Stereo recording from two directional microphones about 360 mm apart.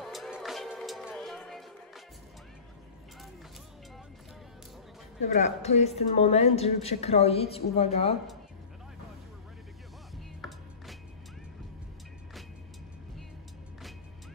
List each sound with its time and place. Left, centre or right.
0.0 s music: centre
5.2 s a woman's voice: centre
10.1 s music: centre